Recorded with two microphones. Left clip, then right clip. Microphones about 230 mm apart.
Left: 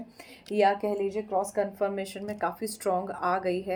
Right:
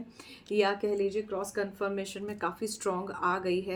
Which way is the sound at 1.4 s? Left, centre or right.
Centre.